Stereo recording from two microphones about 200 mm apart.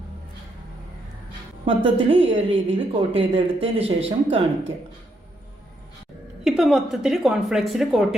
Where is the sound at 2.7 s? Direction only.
30° right (ahead or behind).